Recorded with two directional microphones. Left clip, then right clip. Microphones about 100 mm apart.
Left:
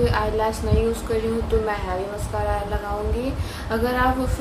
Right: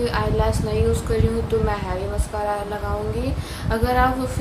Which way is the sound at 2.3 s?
15° right (ahead or behind).